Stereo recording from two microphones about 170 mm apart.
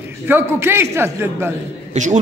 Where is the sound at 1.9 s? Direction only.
45° right (ahead or behind).